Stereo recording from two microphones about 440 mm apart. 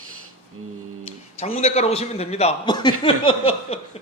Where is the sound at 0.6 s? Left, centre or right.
Right.